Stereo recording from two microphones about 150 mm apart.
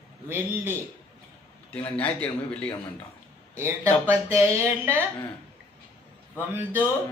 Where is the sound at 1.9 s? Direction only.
10° left (ahead or behind).